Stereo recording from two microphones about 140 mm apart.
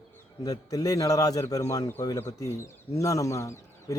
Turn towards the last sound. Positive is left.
turn(degrees=20)  # may be behind; listen again after turning